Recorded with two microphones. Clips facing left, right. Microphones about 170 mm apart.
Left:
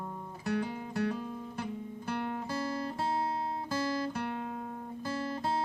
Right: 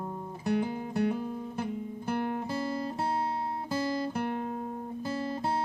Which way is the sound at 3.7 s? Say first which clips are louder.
Right 3 dB; 25° right (ahead or behind).